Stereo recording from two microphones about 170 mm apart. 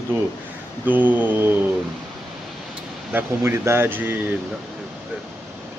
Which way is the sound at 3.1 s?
15° right (ahead or behind).